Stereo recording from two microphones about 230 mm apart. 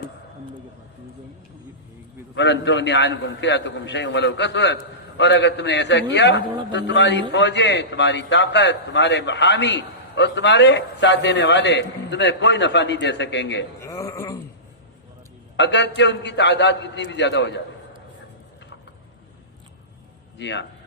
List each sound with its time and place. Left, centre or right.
2.3 s a man's voice: left
13.8 s a sound: centre
15.5 s a man's voice: left
20.4 s a man's voice: left